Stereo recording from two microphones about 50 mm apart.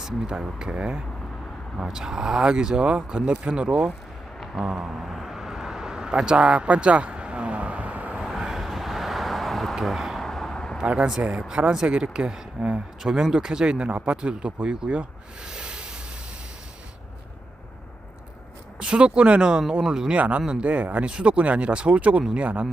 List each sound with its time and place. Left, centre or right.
0.0 s speech: centre
4.6 s a sound: centre; by 8.1 s right
8.4 s vehicle: centre
9.7 s speech: centre
10.2 s a sound: centre
10.8 s speech: right
13.0 s speech: centre
15.4 s a sound: centre
18.8 s speech: right
20.1 s speech: right